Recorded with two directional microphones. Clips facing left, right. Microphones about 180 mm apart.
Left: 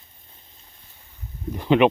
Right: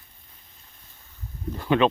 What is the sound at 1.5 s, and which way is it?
Speech, 15° left (ahead or behind).